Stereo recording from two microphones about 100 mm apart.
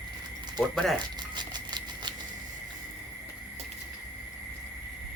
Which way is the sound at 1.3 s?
45° right (ahead or behind).